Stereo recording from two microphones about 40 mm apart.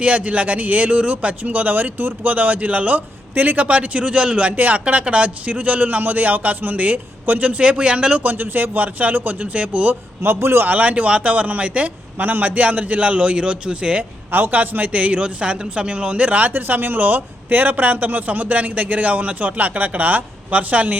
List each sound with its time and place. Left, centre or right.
0.0 s speech: right
4.5 s speech: right
5.0 s speech: right
7.6 s speech: right
8.3 s speech: right
9.9 s a man's voice: right
10.7 s speech: right
12.2 s speech: right
14.3 s speech: right
14.9 s speech: right
16.5 s speech: right